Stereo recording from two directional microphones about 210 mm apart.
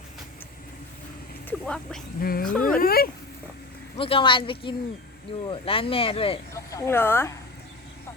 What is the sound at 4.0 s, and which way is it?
Speech, 25° left (ahead or behind).